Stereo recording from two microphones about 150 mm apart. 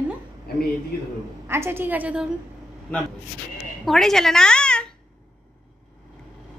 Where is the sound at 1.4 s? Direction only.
15° right (ahead or behind).